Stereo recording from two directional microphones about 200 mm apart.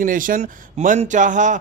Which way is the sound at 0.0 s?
45° right (ahead or behind).